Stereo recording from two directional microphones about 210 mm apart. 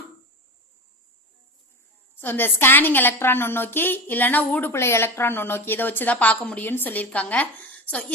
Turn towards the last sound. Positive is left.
turn(degrees=5)  # may be behind; listen again after turning